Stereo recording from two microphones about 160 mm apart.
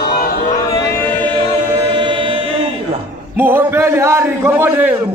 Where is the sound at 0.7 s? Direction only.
20° left (ahead or behind).